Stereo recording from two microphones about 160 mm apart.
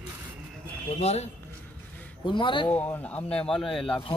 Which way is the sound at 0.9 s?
40° left (ahead or behind).